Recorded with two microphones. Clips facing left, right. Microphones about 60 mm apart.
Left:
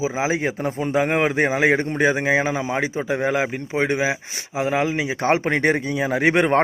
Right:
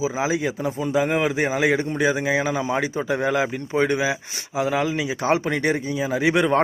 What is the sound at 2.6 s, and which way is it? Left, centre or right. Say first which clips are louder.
Speech: even; left.